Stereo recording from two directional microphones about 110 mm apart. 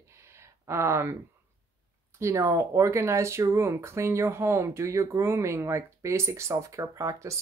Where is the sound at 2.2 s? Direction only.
25° right (ahead or behind).